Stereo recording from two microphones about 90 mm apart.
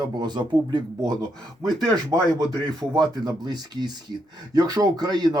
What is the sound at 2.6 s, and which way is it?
Speech, 45° right (ahead or behind).